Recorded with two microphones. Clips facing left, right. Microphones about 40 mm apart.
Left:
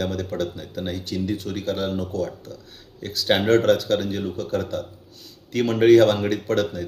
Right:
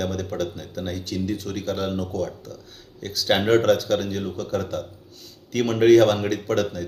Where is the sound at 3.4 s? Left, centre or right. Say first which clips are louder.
Left 1 dB; centre.